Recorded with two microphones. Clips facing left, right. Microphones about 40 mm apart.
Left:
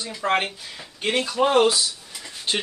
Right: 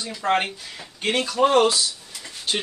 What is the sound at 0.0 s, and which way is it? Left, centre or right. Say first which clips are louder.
Speech: right 1 dB; centre.